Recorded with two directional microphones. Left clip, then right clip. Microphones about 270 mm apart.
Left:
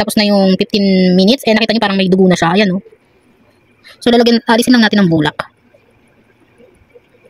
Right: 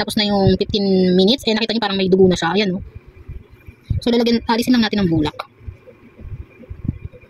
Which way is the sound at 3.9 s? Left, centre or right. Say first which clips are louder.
Left 7 dB; left.